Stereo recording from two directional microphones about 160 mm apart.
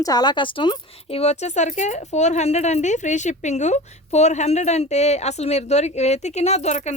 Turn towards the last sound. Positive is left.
turn(degrees=45)  # may be behind; listen again after turning